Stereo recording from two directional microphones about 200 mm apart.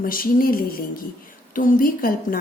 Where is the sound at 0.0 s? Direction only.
45° left (ahead or behind).